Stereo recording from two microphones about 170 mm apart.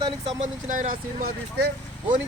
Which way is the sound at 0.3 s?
45° right (ahead or behind).